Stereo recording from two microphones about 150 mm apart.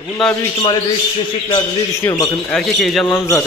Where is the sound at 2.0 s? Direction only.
25° left (ahead or behind).